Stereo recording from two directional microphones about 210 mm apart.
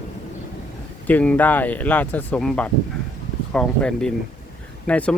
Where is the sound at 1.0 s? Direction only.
5° left (ahead or behind).